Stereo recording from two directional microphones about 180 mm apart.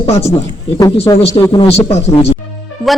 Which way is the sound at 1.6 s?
35° left (ahead or behind).